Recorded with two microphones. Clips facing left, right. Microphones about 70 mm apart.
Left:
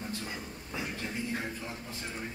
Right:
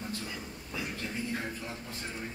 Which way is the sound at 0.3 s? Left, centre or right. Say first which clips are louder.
Left 1 dB; left.